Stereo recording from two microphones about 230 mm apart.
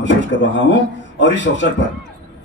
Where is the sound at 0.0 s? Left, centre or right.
Left.